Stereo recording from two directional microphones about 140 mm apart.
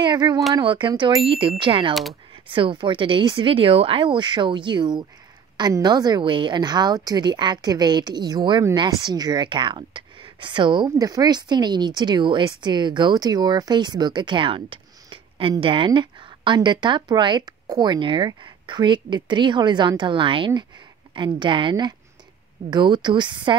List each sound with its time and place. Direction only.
0.0 s a woman's voice: 30° right (ahead or behind)